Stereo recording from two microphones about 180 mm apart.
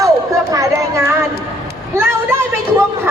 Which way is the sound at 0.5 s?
15° right (ahead or behind).